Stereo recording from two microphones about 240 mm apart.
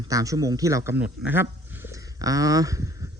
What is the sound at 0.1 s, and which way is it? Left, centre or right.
A man's voice, centre.